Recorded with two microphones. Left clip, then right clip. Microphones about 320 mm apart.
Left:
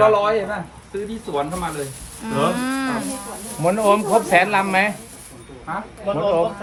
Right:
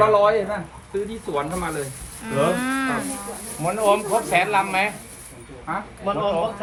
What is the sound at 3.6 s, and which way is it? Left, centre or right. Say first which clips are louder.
Speech: left 3 dB; left.